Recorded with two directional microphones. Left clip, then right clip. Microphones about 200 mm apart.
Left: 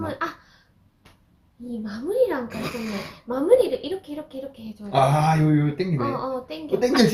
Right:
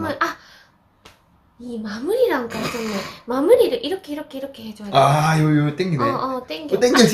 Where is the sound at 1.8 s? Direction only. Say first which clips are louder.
Right 3 dB; 15° right (ahead or behind).